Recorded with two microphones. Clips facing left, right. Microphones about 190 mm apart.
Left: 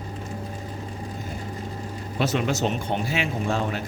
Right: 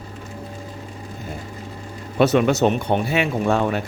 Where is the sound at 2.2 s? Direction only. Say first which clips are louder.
Right 8 dB; 65° right (ahead or behind).